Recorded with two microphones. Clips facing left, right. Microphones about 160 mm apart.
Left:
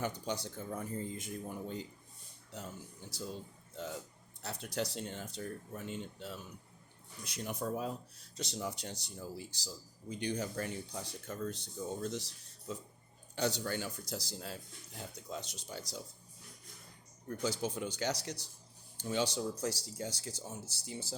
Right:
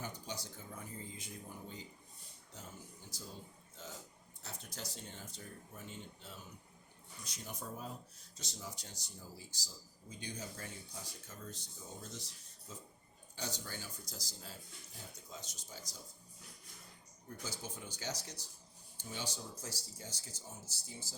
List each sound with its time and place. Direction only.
0.0 s speech: 65° left (ahead or behind)
3.1 s speech: 70° left (ahead or behind)
4.4 s speech: 70° left (ahead or behind)
17.2 s speech: 75° left (ahead or behind)